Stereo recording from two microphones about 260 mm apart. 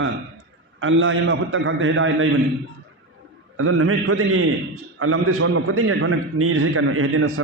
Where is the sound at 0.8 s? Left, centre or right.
Right.